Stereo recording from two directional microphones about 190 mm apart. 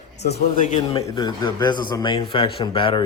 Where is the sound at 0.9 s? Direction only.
20° left (ahead or behind).